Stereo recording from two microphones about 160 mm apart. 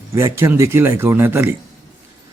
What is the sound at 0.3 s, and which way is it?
Speech, 15° right (ahead or behind).